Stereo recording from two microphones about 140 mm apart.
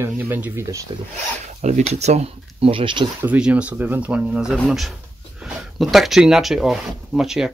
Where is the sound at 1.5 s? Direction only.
55° right (ahead or behind); by 3.0 s 35° right (ahead or behind).